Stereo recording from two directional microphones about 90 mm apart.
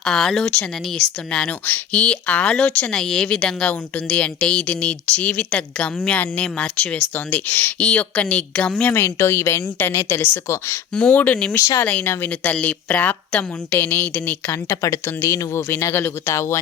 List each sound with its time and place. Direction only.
0.0 s speech: 5° left (ahead or behind)
8.9 s a woman's voice: 25° left (ahead or behind)
10.9 s speech: 15° left (ahead or behind)
14.5 s speech: 35° left (ahead or behind)